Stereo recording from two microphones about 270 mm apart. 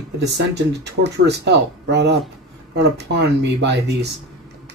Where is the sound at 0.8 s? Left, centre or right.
Right.